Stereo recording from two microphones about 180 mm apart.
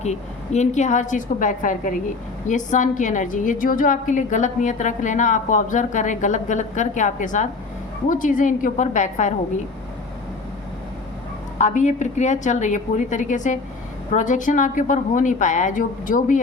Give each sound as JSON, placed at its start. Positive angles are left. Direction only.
{"t": 0.0, "sound": "a woman's voice", "side_deg": 40}
{"t": 11.5, "sound": "a woman's voice", "side_deg": 45}